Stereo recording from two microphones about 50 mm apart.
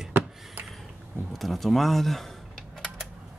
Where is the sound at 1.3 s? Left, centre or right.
Centre.